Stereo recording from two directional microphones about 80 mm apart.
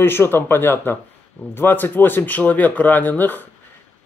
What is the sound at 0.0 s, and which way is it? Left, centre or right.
Speech, left.